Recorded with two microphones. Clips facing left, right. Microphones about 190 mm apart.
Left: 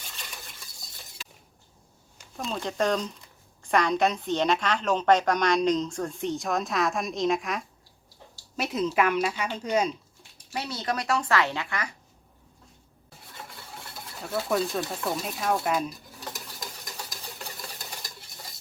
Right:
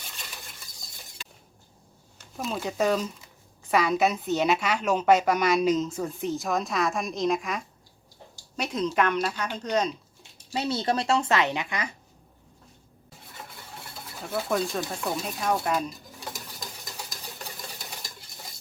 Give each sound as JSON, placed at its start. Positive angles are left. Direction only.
{"t": 2.3, "sound": "speech", "side_deg": -5}
{"t": 10.5, "sound": "a woman's voice", "side_deg": -25}
{"t": 13.9, "sound": "speech", "side_deg": 0}